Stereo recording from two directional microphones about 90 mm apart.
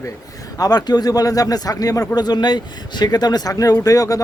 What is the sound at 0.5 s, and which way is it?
A man's voice, 45° left (ahead or behind).